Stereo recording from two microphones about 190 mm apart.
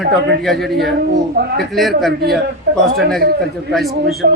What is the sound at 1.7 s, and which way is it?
Speech, centre (ahead or behind).